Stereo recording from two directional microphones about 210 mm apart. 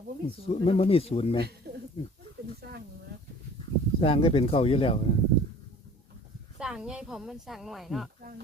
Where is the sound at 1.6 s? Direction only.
50° right (ahead or behind).